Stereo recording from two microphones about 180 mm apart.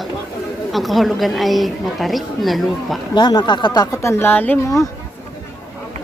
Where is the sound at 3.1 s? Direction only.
25° left (ahead or behind).